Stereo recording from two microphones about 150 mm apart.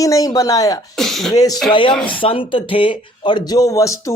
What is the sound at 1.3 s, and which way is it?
Speech, 25° left (ahead or behind).